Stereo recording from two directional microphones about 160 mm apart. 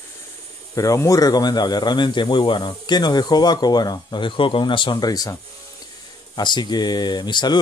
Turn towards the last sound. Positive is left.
turn(degrees=25)  # may be behind; listen again after turning